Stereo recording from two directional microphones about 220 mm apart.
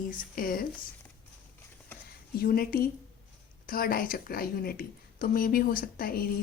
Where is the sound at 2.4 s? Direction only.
45° left (ahead or behind).